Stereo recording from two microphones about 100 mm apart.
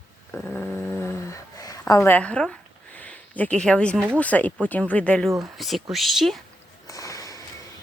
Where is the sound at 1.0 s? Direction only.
35° left (ahead or behind).